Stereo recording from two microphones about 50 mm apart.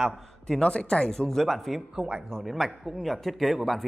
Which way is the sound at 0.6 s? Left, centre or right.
Left.